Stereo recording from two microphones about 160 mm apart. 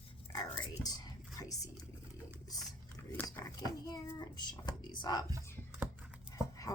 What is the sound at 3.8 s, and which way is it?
Child singing, 25° left (ahead or behind).